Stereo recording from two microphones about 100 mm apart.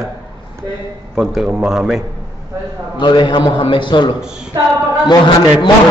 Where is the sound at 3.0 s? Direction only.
50° left (ahead or behind).